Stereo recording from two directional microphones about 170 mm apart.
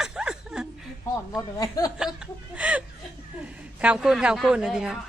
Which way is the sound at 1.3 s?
20° left (ahead or behind).